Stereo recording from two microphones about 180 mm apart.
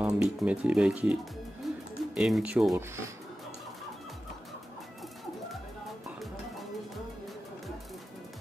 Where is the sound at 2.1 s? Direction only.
5° right (ahead or behind).